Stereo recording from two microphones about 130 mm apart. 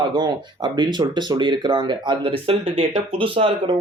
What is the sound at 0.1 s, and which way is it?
Speech, 35° right (ahead or behind).